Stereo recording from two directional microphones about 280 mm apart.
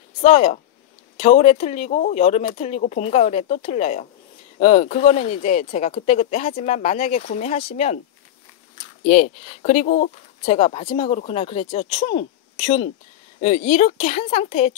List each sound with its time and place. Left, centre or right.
0.2 s speech: left
9.0 s speech: left